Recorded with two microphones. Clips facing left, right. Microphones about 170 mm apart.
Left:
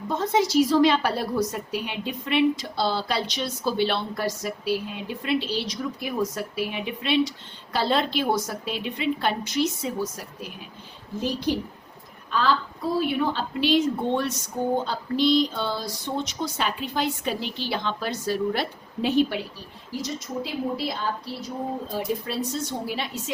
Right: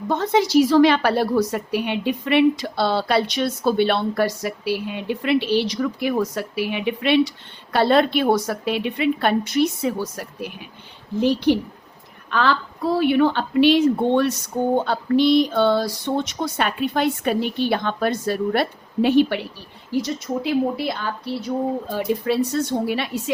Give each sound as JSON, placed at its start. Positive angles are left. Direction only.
{"t": 0.1, "sound": "a woman's voice", "side_deg": -70}